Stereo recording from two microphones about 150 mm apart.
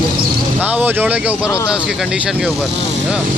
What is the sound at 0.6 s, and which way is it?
Speech, 10° right (ahead or behind).